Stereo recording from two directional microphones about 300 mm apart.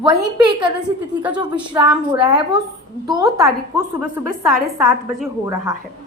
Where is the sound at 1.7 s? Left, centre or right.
Centre.